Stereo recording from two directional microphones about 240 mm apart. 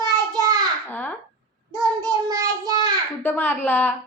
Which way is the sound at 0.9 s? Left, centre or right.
Centre.